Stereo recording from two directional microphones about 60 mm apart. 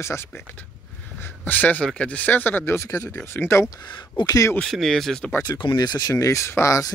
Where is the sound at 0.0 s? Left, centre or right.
Left.